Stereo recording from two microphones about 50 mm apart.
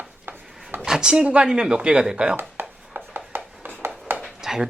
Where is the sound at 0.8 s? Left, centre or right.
Centre.